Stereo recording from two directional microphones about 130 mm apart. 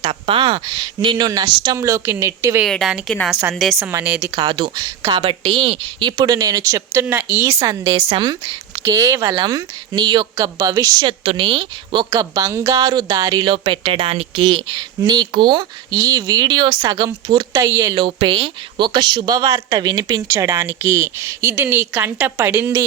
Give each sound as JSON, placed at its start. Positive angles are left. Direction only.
{"t": 0.0, "sound": "speech", "side_deg": -45}
{"t": 2.6, "sound": "a woman's voice", "side_deg": 0}
{"t": 3.8, "sound": "a woman's voice", "side_deg": -10}
{"t": 4.4, "sound": "speech", "side_deg": -35}
{"t": 5.0, "sound": "speech", "side_deg": -50}
{"t": 11.0, "sound": "speech", "side_deg": -45}
{"t": 12.1, "sound": "speech", "side_deg": -25}
{"t": 12.8, "sound": "speech", "side_deg": -35}
{"t": 13.4, "sound": "speech", "side_deg": -40}
{"t": 18.0, "sound": "speech", "side_deg": -45}